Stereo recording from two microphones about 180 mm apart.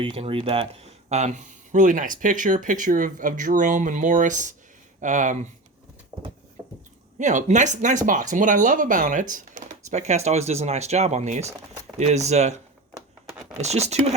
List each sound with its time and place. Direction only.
0.0 s speech: 30° right (ahead or behind)
7.2 s speech: 40° right (ahead or behind)
13.6 s speech: 40° right (ahead or behind)